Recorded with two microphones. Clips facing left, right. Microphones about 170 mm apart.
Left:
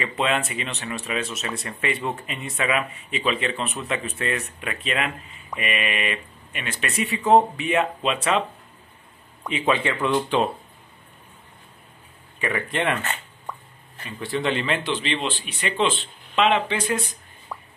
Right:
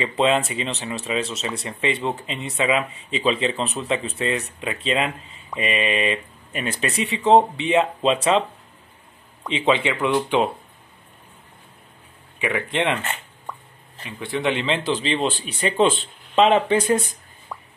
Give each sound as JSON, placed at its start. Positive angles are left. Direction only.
{"t": 0.0, "sound": "speech", "side_deg": -30}
{"t": 9.5, "sound": "speech", "side_deg": -25}
{"t": 12.4, "sound": "speech", "side_deg": -15}
{"t": 13.5, "sound": "a sound", "side_deg": 0}
{"t": 14.0, "sound": "speech", "side_deg": -15}
{"t": 14.9, "sound": "speech", "side_deg": -35}
{"t": 17.5, "sound": "a sound", "side_deg": 0}